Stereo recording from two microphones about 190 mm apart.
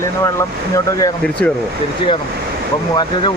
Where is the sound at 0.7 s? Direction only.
15° left (ahead or behind).